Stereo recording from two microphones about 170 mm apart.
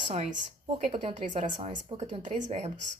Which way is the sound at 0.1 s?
40° right (ahead or behind).